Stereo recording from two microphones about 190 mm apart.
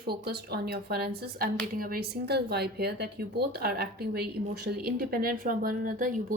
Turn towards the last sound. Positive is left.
turn(degrees=-45)  # may be behind; listen again after turning